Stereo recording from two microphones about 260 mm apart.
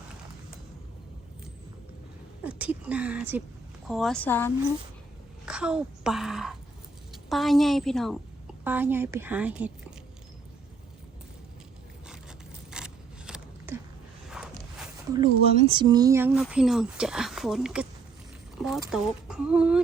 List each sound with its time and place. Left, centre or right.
2.4 s speech: centre
5.5 s a woman's voice: centre
12.7 s a sound: centre
15.1 s speech: centre
18.5 s a sound: centre
18.9 s speech: centre